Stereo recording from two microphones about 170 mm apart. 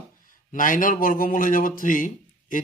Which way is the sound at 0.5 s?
50° left (ahead or behind).